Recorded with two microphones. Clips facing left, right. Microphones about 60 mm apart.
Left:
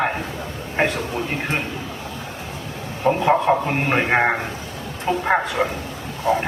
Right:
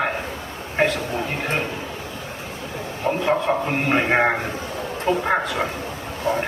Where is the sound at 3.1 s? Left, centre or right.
Centre.